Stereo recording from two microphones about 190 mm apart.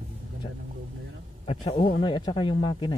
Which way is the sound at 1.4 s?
30° left (ahead or behind).